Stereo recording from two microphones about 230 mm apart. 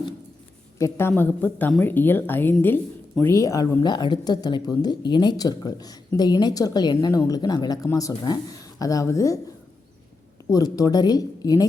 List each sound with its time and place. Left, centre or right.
0.8 s speech: centre
10.5 s speech: centre